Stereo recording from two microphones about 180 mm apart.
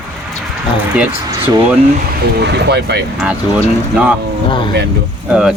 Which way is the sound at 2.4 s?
70° right (ahead or behind).